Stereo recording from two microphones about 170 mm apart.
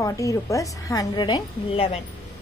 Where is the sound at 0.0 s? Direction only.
20° left (ahead or behind); by 2.0 s 35° left (ahead or behind).